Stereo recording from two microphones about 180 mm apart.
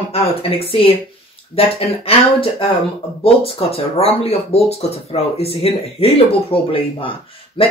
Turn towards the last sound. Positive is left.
turn(degrees=30)  # may be behind; listen again after turning